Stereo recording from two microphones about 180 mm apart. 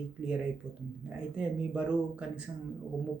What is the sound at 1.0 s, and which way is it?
Speech, 5° right (ahead or behind).